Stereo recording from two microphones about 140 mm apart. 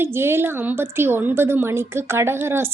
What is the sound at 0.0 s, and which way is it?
A woman's voice, 15° right (ahead or behind).